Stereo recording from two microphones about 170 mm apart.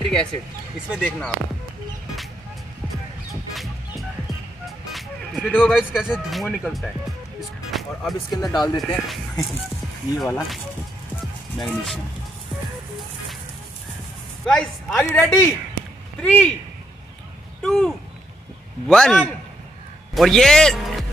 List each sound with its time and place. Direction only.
0.0 s a sound: 5° left (ahead or behind)
0.8 s speech: centre (ahead or behind)
4.6 s speech: centre (ahead or behind)
7.3 s music: centre (ahead or behind)
8.3 s speech: 20° left (ahead or behind)
8.7 s speech: centre (ahead or behind)
14.4 s a man's voice: 5° left (ahead or behind)
17.6 s speech: 5° left (ahead or behind)